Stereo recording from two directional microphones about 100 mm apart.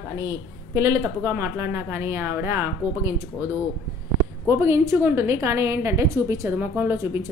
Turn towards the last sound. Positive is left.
turn(degrees=-20)  # may be behind; listen again after turning